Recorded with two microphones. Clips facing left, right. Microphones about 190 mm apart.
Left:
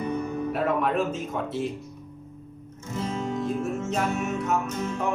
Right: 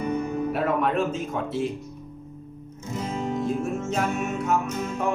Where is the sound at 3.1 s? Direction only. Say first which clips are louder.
Right 2 dB; 15° right (ahead or behind).